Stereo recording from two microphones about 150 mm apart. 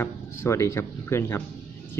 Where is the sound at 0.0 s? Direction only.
15° left (ahead or behind).